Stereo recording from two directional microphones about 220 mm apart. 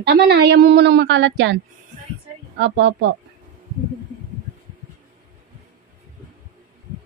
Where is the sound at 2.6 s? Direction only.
55° right (ahead or behind).